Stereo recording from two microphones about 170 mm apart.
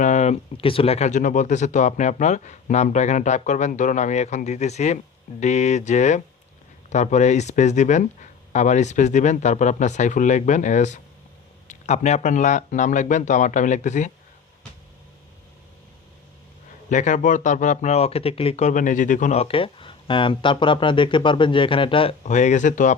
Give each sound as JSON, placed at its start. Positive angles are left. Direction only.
{"t": 0.0, "sound": "speech", "side_deg": 45}
{"t": 16.9, "sound": "speech", "side_deg": 45}